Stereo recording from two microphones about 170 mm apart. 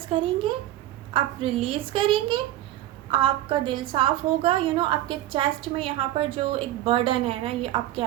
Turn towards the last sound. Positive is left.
turn(degrees=-30)  # may be behind; listen again after turning